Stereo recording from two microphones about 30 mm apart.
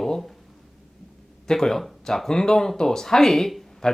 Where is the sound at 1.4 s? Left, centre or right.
Centre.